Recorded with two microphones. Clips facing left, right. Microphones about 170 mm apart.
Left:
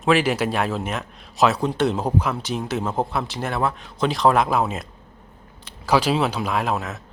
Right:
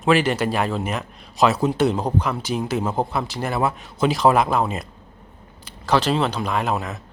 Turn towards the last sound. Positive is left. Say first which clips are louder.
# even
turn(degrees=0)  # may be behind; listen again after turning